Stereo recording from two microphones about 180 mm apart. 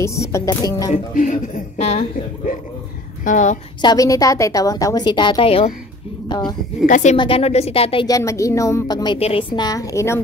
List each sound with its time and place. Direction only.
0.0 s speech: 15° left (ahead or behind)
0.9 s a woman's voice: 45° left (ahead or behind)
3.8 s a woman's voice: 20° left (ahead or behind)
6.2 s a sound: 25° left (ahead or behind)
6.9 s speech: 40° left (ahead or behind)
7.2 s speech: 30° left (ahead or behind)
8.2 s a woman's voice: 15° left (ahead or behind)